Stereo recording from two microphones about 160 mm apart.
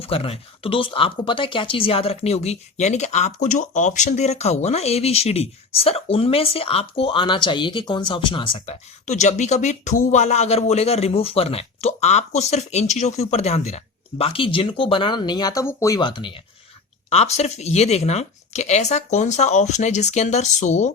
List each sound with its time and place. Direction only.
0.0 s speech: 35° left (ahead or behind)
9.0 s speech: 45° left (ahead or behind); by 16.4 s 30° left (ahead or behind)
17.1 s speech: 40° left (ahead or behind)